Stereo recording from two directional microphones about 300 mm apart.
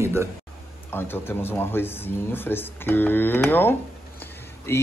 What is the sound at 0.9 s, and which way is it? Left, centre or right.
Speech, centre.